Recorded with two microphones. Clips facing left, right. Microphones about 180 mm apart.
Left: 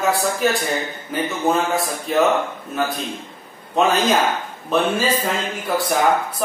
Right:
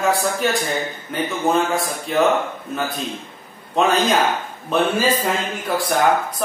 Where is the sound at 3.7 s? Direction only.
Centre (ahead or behind).